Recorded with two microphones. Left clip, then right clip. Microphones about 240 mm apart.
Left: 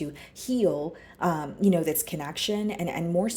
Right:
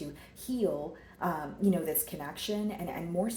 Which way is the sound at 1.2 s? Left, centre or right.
Left.